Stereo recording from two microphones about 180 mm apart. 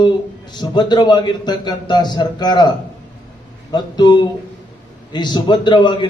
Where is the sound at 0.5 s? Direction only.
25° left (ahead or behind).